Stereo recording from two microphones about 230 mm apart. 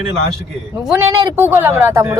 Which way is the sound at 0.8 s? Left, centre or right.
Centre.